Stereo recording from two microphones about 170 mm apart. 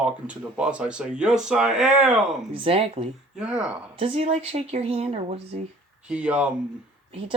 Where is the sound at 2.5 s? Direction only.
35° right (ahead or behind).